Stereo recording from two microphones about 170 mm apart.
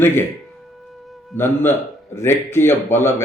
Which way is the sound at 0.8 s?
Centre (ahead or behind).